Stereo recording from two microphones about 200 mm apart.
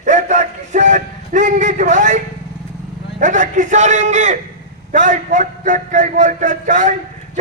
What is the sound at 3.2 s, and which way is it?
A man's voice, 40° right (ahead or behind).